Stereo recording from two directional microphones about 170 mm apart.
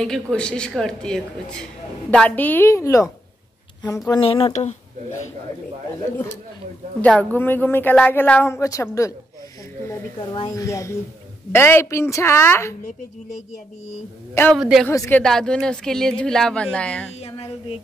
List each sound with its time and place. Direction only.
0.0 s a woman's voice: 5° left (ahead or behind)
4.1 s speech: 35° left (ahead or behind)
7.0 s a woman's voice: 10° left (ahead or behind)
10.5 s a woman's voice: 20° left (ahead or behind)
14.5 s a woman's voice: centre (ahead or behind)
14.9 s a woman's voice: 15° left (ahead or behind)